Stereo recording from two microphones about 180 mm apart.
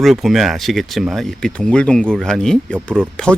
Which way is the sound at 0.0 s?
Centre (ahead or behind).